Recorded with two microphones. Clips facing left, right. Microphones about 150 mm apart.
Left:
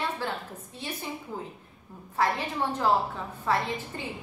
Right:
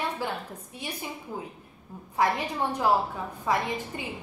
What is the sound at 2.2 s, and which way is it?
Speech, 15° right (ahead or behind).